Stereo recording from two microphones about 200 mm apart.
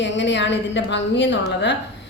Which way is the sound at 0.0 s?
60° left (ahead or behind).